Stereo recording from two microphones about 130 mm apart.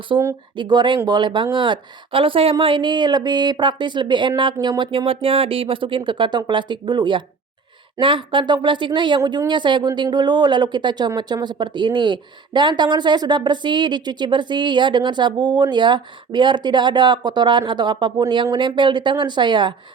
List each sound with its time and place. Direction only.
0.1 s speech: 35° right (ahead or behind)